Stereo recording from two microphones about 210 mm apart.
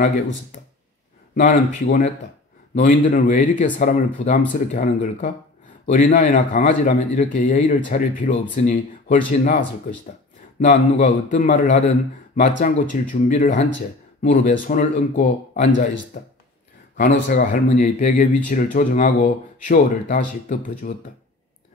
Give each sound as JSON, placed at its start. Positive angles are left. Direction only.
{"t": 1.3, "sound": "a man's voice", "side_deg": 35}